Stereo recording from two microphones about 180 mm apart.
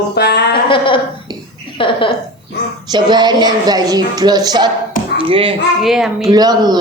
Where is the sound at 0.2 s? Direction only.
70° left (ahead or behind).